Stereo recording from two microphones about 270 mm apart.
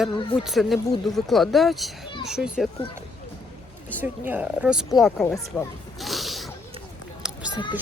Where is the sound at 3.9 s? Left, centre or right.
Centre.